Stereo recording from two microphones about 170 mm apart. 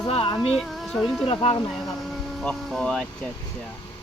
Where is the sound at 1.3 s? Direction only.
30° left (ahead or behind).